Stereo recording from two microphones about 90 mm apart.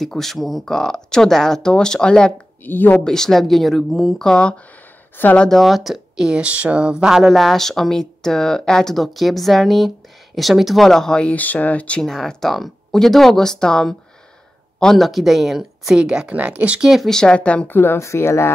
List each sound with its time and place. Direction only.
0.0 s speech: 5° left (ahead or behind)
2.6 s speech: 20° left (ahead or behind)
3.1 s speech: 5° left (ahead or behind)
4.3 s speech: 10° left (ahead or behind)
5.5 s speech: centre (ahead or behind)
17.1 s speech: 10° left (ahead or behind)
17.7 s speech: 30° left (ahead or behind)